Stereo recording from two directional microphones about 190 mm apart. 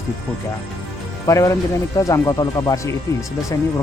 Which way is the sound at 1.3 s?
15° left (ahead or behind).